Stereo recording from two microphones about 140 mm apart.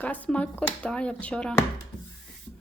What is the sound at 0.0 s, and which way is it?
Speech, 10° left (ahead or behind).